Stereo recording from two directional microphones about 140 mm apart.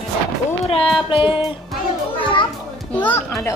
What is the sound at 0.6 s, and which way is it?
Speech, 45° left (ahead or behind).